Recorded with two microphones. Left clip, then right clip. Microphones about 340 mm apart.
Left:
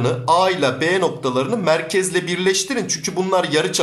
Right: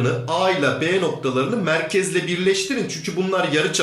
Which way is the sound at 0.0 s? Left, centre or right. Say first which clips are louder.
Left 4 dB; centre.